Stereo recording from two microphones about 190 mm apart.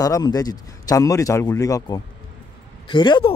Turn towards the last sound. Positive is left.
turn(degrees=25)  # may be behind; listen again after turning